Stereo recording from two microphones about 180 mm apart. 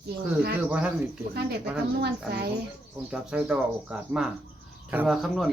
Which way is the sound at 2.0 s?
60° right (ahead or behind).